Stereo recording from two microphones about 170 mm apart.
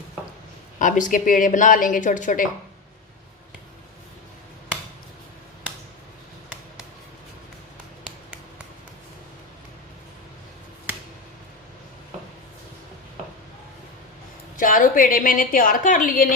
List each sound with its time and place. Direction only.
0.8 s a woman's voice: 50° left (ahead or behind)
8.0 s finger snapping: 5° right (ahead or behind)
14.6 s a woman's voice: 50° left (ahead or behind)